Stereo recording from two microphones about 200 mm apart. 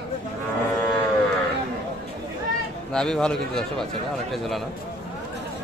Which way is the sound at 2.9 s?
5° left (ahead or behind).